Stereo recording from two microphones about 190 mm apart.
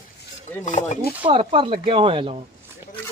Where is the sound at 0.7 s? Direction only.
40° left (ahead or behind).